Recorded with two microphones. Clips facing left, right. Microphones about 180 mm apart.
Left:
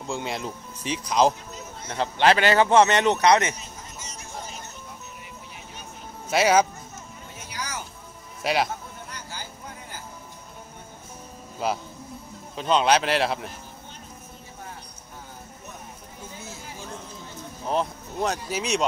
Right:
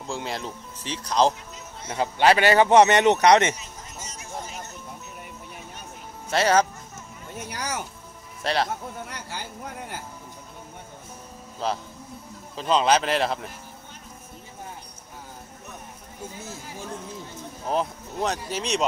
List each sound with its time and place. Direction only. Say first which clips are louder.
0.0 s speech: left 1 dB; centre (ahead or behind)
1.9 s speech: right 1 dB; 10° right (ahead or behind); by 3.5 s 25° right (ahead or behind)
6.3 s speech: left 1 dB; 10° left (ahead or behind)
7.3 s music: right 4 dB; 60° right (ahead or behind)
8.4 s speech: left 1 dB; 10° left (ahead or behind)
9.1 s a sound: right 3 dB; 70° right (ahead or behind)
11.6 s speech: left 1 dB; 10° left (ahead or behind)
17.6 s speech: even; centre (ahead or behind)